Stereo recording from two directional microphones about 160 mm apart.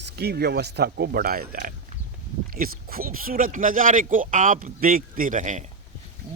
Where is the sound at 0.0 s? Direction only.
90° right.